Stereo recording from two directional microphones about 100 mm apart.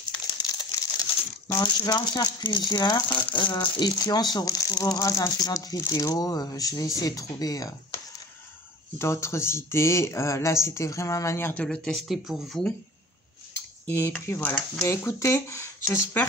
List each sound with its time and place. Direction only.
0.5 s crumpling: 40° left (ahead or behind)
1.6 s speech: 45° left (ahead or behind)
8.9 s speech: 25° left (ahead or behind)
11.5 s speech: 10° left (ahead or behind)
13.8 s cutlery: 25° left (ahead or behind)
14.2 s speech: 25° left (ahead or behind)